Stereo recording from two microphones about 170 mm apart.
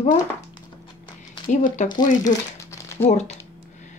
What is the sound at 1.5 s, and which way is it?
Speech, 50° left (ahead or behind).